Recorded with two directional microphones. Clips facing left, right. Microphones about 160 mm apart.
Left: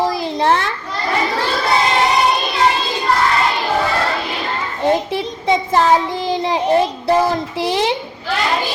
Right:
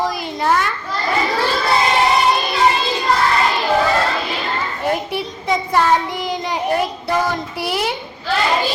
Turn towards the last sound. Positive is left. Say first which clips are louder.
# left 4 dB
turn(degrees=30)  # may be behind; listen again after turning